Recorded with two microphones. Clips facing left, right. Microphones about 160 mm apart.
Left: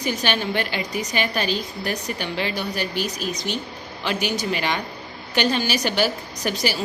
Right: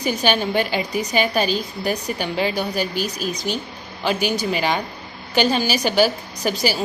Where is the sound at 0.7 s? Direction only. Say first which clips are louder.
Right 4 dB; 40° right (ahead or behind).